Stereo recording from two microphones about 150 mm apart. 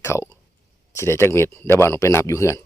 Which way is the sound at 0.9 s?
20° left (ahead or behind).